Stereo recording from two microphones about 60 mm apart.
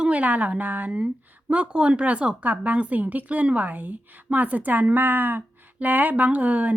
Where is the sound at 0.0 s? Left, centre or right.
Right.